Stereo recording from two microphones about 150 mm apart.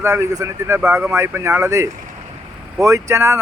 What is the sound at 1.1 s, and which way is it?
Speech, 20° right (ahead or behind).